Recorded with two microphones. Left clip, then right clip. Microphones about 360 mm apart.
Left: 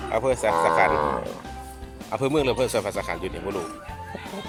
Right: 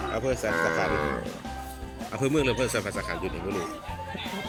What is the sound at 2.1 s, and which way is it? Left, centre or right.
Speech, centre.